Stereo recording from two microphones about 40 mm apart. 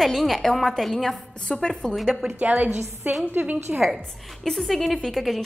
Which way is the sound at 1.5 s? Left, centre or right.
Centre.